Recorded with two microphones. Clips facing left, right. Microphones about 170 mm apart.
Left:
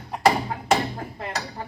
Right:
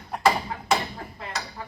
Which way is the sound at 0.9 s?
45° left (ahead or behind).